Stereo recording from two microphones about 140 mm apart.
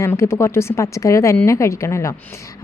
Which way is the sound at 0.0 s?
20° left (ahead or behind).